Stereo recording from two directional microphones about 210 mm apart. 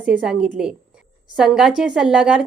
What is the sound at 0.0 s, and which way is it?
A woman's voice, 5° right (ahead or behind).